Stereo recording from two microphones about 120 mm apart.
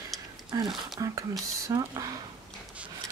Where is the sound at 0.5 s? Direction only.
30° right (ahead or behind).